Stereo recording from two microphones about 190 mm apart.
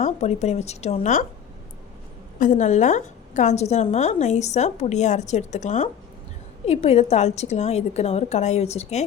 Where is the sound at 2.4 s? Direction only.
40° left (ahead or behind).